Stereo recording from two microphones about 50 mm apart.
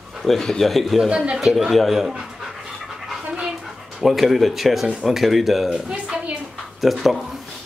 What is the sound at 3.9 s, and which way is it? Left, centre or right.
Speech, centre.